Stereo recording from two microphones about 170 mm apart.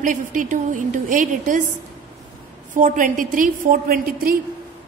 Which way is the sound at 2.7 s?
50° right (ahead or behind).